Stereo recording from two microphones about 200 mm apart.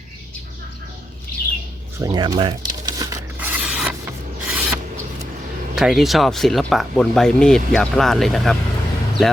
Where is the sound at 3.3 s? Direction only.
10° right (ahead or behind).